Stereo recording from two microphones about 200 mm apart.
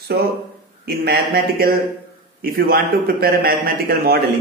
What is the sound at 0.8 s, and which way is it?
A man's voice, 50° right (ahead or behind).